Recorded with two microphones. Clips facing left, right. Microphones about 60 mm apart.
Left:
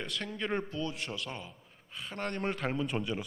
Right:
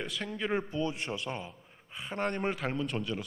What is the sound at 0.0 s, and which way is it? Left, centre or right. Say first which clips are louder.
Speech: right 1 dB; centre.